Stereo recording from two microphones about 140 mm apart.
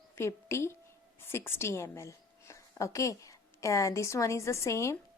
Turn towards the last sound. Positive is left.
turn(degrees=20)  # may be behind; listen again after turning